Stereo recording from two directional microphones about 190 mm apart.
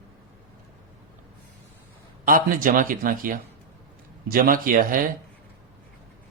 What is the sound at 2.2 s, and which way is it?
A man's voice, 45° right (ahead or behind).